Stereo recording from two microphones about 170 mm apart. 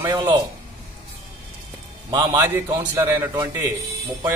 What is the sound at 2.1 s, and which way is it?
A man's voice, 20° right (ahead or behind).